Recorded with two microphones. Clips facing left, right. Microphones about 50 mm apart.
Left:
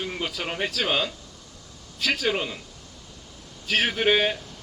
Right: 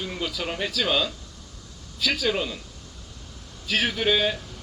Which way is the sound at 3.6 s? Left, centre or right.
Left.